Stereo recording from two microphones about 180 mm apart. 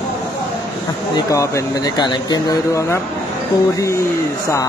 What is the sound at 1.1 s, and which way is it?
Speech, 15° left (ahead or behind).